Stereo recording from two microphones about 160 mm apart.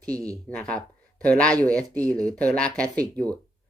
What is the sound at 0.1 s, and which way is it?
Speech, 20° right (ahead or behind).